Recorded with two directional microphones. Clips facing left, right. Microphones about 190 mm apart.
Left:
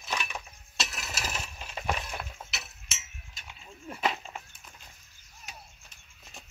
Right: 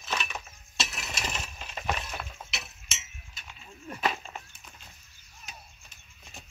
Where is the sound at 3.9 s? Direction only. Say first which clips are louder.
Even; 20° left (ahead or behind).